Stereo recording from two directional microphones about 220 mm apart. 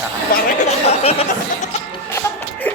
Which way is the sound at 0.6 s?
30° left (ahead or behind).